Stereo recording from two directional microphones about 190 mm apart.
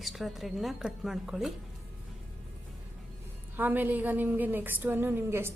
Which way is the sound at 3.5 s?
10° right (ahead or behind).